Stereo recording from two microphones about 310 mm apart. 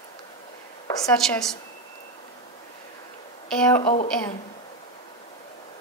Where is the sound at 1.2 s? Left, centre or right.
Centre.